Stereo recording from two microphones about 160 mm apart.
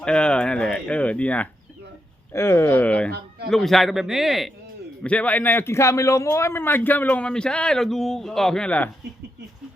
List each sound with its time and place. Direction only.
0.0 s a man's voice: 5° left (ahead or behind)
3.1 s a sound: 85° right
3.5 s a man's voice: centre (ahead or behind)